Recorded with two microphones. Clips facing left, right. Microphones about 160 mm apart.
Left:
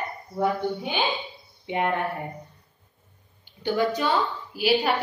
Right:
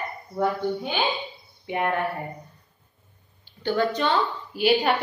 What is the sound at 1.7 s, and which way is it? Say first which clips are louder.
Speech: even; 20° left (ahead or behind).